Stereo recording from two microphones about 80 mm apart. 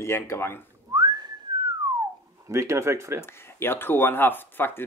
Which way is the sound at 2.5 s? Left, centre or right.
Right.